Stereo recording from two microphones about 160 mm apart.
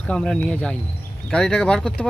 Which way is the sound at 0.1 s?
5° left (ahead or behind).